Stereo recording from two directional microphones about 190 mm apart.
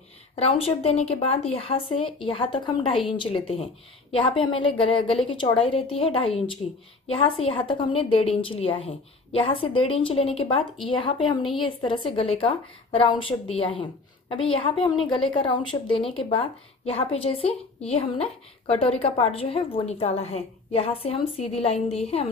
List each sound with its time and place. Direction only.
0.4 s a woman's voice: 30° left (ahead or behind)